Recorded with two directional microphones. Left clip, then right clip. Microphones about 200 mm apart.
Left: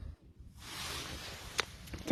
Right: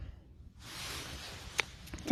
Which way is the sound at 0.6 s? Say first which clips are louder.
Left 1 dB; 40° left (ahead or behind).